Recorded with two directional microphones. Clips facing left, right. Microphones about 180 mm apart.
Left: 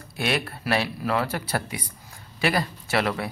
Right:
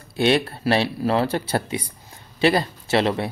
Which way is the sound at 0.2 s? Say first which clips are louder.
Right 8 dB; 30° right (ahead or behind).